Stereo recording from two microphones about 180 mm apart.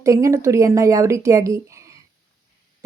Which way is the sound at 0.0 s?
15° right (ahead or behind).